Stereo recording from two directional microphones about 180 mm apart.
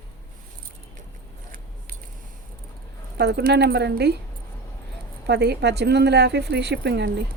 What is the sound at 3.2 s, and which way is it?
A woman's voice, 65° right (ahead or behind).